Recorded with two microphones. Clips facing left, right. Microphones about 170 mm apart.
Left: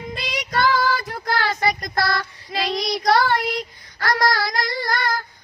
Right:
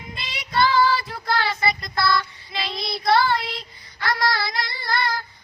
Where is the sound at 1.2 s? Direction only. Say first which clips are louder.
Left 4 dB; 45° left (ahead or behind).